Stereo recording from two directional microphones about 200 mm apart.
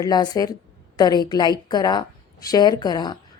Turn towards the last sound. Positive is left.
turn(degrees=20)  # may be behind; listen again after turning